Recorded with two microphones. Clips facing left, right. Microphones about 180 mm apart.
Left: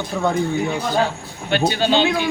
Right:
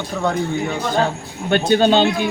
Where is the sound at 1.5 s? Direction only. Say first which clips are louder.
Right 3 dB; 50° right (ahead or behind).